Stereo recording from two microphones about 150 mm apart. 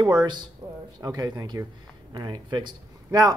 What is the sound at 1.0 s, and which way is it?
Speech, 25° right (ahead or behind).